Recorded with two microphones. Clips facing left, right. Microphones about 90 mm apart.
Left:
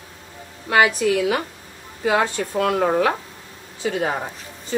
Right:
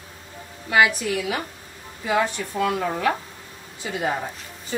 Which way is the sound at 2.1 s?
70° left (ahead or behind).